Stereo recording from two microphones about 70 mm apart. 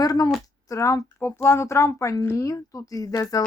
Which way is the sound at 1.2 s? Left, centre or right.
Left.